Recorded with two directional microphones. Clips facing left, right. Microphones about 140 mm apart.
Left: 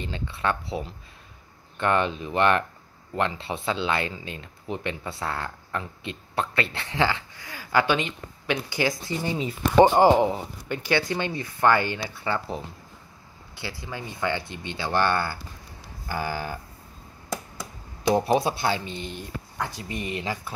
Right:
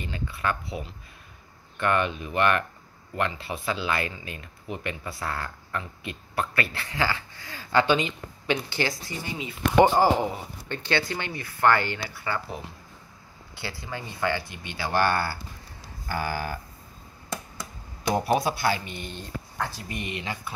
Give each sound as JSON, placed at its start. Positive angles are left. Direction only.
{"t": 0.0, "sound": "speech", "side_deg": 25}
{"t": 8.6, "sound": "a sound", "side_deg": 15}
{"t": 9.2, "sound": "speech", "side_deg": 35}
{"t": 10.7, "sound": "speech", "side_deg": 15}
{"t": 13.6, "sound": "speech", "side_deg": 15}
{"t": 16.1, "sound": "a sound", "side_deg": 15}
{"t": 18.1, "sound": "speech", "side_deg": 25}
{"t": 19.9, "sound": "speech", "side_deg": 30}